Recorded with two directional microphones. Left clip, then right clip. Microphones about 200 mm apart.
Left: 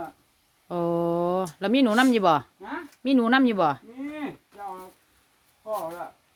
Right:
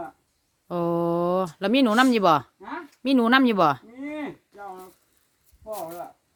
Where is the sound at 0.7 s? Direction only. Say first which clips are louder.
Right 1 dB; 15° right (ahead or behind).